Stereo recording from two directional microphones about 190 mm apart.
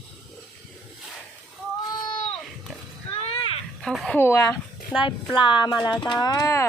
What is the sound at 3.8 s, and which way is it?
Speech, 5° left (ahead or behind).